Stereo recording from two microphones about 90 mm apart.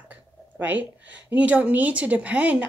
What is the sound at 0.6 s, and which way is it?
Speech, 20° right (ahead or behind).